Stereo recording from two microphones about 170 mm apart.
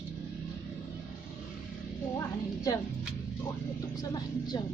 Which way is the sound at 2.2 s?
20° left (ahead or behind).